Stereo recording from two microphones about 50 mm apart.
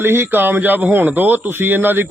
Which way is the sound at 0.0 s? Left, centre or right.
Right.